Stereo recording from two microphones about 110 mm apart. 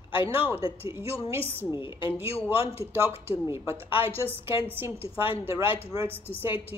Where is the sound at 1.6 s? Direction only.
50° left (ahead or behind).